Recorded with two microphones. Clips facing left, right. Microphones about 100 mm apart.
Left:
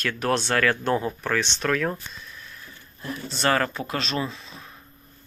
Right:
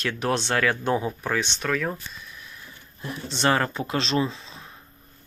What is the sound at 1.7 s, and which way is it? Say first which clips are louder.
Speech: left 3 dB; centre (ahead or behind).